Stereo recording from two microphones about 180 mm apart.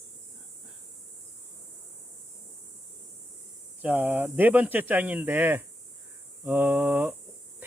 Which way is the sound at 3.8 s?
10° right (ahead or behind).